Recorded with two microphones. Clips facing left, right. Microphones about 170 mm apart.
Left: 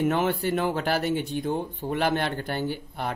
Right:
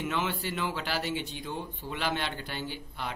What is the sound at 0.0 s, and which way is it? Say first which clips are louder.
Speech: left 8 dB; 50° left (ahead or behind).